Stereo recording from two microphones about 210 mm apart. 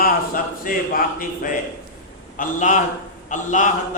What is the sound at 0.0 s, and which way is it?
A man's voice, 40° left (ahead or behind).